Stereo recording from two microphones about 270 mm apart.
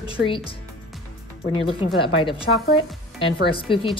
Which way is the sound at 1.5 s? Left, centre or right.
Centre.